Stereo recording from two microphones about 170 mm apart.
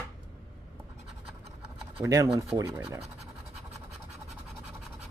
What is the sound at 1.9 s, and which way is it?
Speech, 20° right (ahead or behind).